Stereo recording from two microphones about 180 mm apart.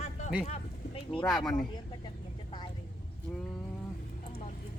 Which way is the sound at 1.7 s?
25° left (ahead or behind).